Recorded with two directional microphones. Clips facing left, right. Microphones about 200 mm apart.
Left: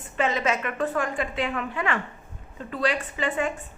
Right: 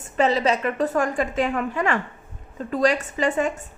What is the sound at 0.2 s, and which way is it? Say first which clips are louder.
A woman's voice: right 5 dB; 35° right (ahead or behind).